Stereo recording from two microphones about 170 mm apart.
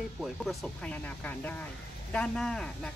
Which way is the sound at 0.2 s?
Centre (ahead or behind).